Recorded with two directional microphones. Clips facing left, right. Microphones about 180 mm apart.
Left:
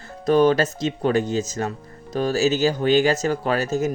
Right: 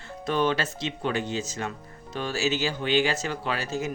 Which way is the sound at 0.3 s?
40° left (ahead or behind).